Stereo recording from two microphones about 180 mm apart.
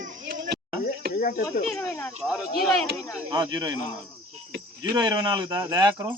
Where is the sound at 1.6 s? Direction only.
Centre (ahead or behind).